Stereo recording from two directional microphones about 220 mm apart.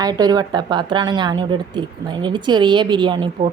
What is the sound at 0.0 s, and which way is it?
A woman's voice, 15° right (ahead or behind).